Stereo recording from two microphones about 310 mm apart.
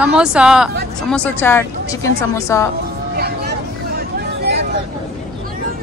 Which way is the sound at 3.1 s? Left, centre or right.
Right.